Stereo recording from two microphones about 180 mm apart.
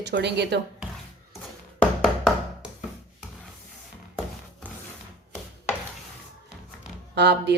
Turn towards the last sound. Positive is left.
turn(degrees=-70)  # may be behind; listen again after turning